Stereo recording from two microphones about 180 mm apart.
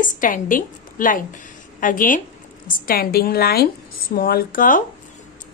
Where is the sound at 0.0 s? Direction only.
45° left (ahead or behind).